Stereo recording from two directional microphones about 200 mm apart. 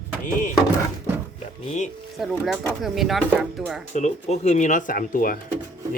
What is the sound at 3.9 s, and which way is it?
Speech, 35° left (ahead or behind).